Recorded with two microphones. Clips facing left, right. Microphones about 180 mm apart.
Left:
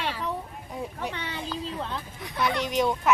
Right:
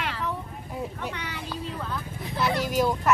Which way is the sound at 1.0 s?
30° left (ahead or behind).